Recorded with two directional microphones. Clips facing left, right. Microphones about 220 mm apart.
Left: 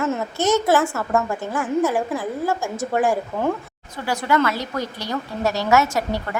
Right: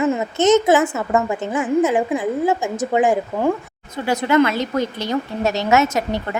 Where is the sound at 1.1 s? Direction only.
5° right (ahead or behind).